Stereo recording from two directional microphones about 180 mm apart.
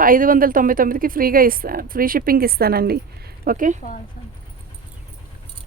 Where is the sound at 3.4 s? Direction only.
45° right (ahead or behind).